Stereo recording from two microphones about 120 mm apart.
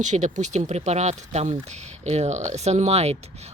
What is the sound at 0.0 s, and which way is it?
Speech, 90° right.